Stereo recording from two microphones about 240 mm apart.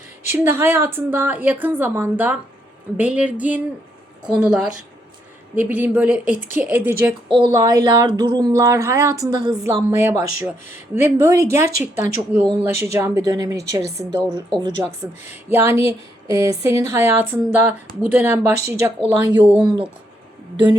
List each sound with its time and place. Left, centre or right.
0.3 s speech: centre
3.0 s a sound: centre
5.5 s speech: centre
14.8 s speech: centre
19.6 s speech: centre